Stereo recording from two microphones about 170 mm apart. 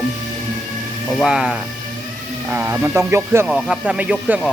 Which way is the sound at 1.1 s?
Centre (ahead or behind).